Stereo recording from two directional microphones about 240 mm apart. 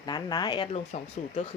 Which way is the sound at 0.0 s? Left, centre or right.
Centre.